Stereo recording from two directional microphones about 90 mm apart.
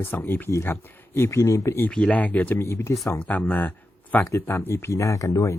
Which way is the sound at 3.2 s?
20° left (ahead or behind).